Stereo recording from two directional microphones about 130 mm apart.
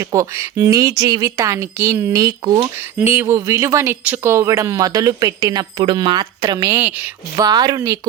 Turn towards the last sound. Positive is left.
turn(degrees=-25)  # may be behind; listen again after turning